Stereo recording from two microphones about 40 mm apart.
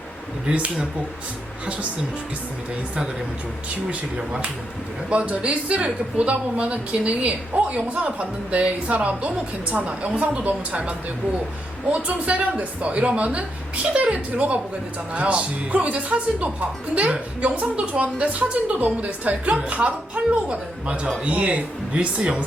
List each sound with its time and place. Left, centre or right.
0.4 s speech: right
5.0 s speech: right